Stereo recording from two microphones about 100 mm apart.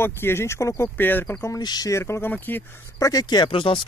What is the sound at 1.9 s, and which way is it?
Speech, 25° left (ahead or behind).